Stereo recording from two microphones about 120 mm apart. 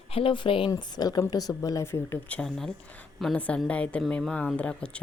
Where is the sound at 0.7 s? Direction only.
35° left (ahead or behind).